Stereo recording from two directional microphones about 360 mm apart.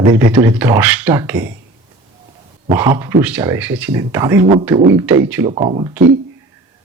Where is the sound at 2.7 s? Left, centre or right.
Centre.